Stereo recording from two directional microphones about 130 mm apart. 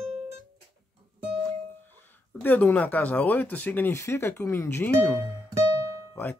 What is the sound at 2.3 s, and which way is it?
Speech, 15° left (ahead or behind).